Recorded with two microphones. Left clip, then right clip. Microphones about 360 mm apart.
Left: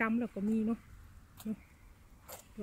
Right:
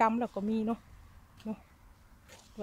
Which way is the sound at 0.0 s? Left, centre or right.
Centre.